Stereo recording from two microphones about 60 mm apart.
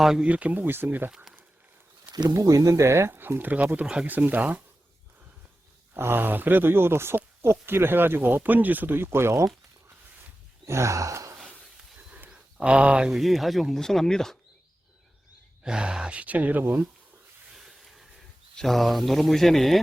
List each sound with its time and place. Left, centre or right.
0.0 s speech: centre
0.3 s speech: right
2.4 s speech: right
2.8 s speech: right
5.9 s speech: right
9.0 s speech: right
10.7 s sigh: right
12.3 s a sound: centre
13.1 s speech: centre
15.6 s speech: centre; by 16.8 s right
17.5 s a sound: centre
18.6 s speech: centre